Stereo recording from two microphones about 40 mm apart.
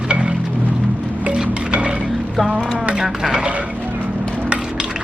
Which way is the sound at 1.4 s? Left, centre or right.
Right.